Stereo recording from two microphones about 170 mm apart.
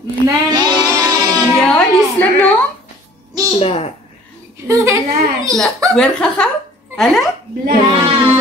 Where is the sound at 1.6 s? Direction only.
10° left (ahead or behind).